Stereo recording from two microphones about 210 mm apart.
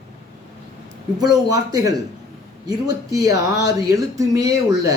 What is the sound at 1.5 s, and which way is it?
Speech, 15° right (ahead or behind).